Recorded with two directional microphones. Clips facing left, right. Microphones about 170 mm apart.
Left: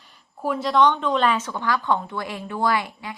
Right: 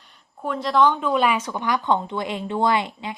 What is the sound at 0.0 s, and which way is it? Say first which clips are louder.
Speech: left 3 dB; 5° left (ahead or behind).